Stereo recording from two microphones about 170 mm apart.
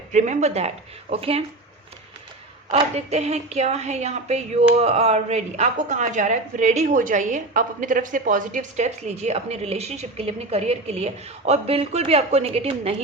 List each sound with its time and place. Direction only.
0.1 s a woman's voice: 45° right (ahead or behind)
2.9 s a woman's voice: 40° right (ahead or behind)